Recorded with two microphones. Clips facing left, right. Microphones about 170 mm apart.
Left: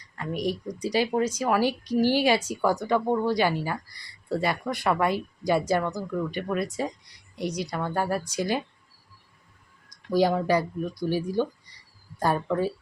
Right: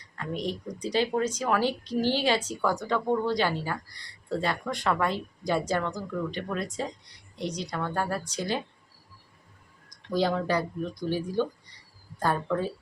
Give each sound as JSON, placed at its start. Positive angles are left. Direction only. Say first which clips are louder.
{"t": 0.2, "sound": "speech", "louder": "left 3 dB", "side_deg": 10}
{"t": 10.1, "sound": "speech", "louder": "left 4 dB", "side_deg": 10}